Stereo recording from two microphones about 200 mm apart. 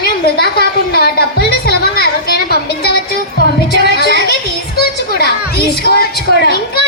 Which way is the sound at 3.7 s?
55° left (ahead or behind).